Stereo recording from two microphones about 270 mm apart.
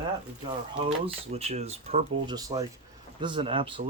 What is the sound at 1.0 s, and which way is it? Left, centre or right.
Speech, right.